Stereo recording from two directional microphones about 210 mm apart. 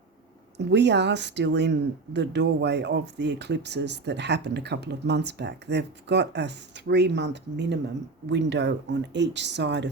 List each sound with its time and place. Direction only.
0.5 s speech: 55° right (ahead or behind)